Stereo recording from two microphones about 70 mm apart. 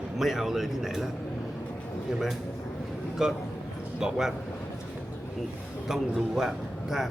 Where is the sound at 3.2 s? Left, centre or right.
Centre.